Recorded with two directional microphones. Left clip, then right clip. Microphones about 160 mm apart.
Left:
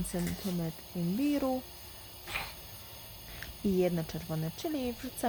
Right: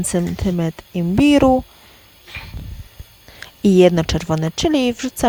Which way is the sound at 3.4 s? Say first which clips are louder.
Right 18 dB; 70° right (ahead or behind).